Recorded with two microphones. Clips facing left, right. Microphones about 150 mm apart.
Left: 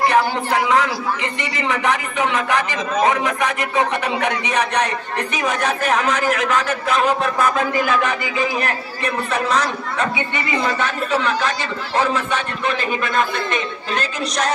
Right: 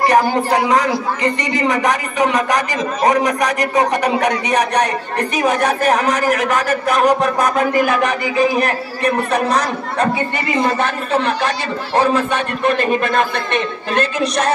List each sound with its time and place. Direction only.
0.1 s speech: 40° right (ahead or behind)
5.9 s a man's voice: 60° right (ahead or behind)
9.9 s speech: 40° right (ahead or behind)
11.1 s a man's voice: 55° right (ahead or behind)